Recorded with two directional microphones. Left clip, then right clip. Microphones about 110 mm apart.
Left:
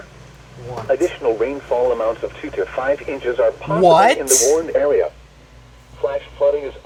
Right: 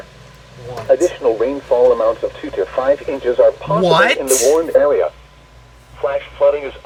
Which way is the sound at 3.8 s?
40° left (ahead or behind).